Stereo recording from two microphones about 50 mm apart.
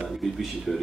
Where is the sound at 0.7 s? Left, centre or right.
Centre.